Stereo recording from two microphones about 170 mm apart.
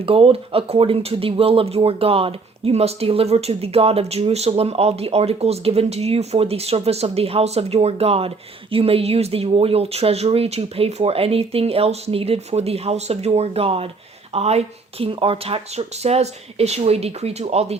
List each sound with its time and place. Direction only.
0.0 s speech: 35° right (ahead or behind)